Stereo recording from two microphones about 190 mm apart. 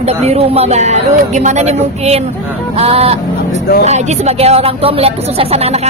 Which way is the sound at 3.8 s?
35° right (ahead or behind).